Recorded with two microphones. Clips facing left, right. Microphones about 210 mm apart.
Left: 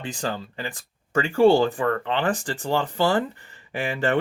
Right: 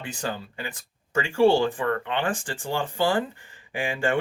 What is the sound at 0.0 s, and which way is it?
Speech, 35° left (ahead or behind).